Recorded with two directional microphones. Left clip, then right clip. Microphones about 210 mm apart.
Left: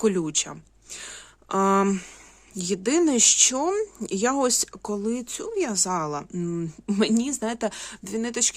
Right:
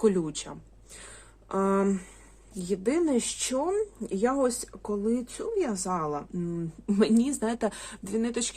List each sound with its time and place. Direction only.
0.0 s speech: 35° left (ahead or behind)
1.5 s speech: 50° left (ahead or behind)
6.9 s speech: 30° left (ahead or behind)